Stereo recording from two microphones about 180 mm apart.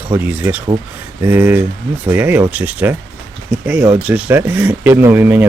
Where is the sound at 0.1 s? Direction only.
10° right (ahead or behind).